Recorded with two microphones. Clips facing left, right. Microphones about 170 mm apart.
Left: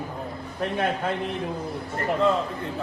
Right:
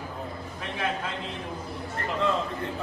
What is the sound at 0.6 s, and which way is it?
Speech, 60° left (ahead or behind).